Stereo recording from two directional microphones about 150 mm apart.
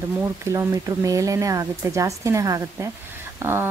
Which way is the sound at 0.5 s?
20° right (ahead or behind).